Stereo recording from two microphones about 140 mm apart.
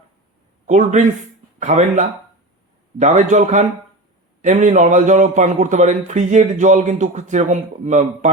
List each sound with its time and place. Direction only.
0.7 s a man's voice: 60° right (ahead or behind)